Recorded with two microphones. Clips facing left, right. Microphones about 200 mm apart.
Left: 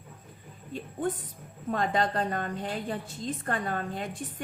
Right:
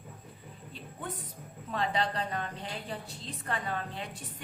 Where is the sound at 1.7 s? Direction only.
50° left (ahead or behind).